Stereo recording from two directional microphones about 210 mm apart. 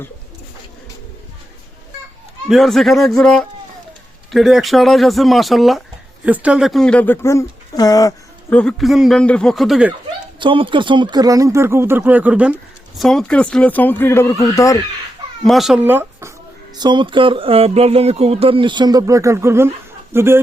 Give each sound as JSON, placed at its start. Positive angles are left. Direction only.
{"t": 2.5, "sound": "speech", "side_deg": 0}
{"t": 8.5, "sound": "speech", "side_deg": 0}
{"t": 10.4, "sound": "speech", "side_deg": -25}
{"t": 15.4, "sound": "speech", "side_deg": 0}
{"t": 16.7, "sound": "a sound", "side_deg": -20}
{"t": 20.1, "sound": "speech", "side_deg": -10}